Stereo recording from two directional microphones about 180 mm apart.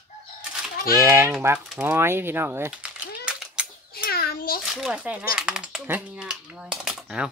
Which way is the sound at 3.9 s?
60° left (ahead or behind).